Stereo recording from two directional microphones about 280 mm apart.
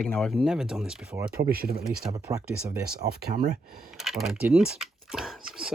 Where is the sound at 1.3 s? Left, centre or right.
Right.